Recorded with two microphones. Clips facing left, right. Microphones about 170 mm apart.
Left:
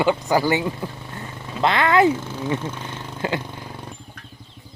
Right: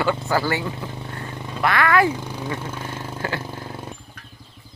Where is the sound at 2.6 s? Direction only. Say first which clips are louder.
Even; 10° right (ahead or behind).